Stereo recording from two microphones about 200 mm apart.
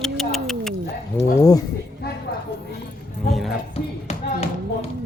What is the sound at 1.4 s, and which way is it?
Speech, 20° left (ahead or behind).